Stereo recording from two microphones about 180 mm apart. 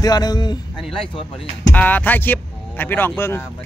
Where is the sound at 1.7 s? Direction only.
10° left (ahead or behind).